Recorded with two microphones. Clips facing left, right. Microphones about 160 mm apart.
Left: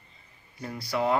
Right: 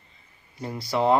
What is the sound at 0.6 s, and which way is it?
Speech, 25° right (ahead or behind).